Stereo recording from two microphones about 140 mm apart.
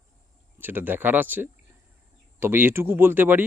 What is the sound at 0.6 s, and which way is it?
Speech, 15° right (ahead or behind).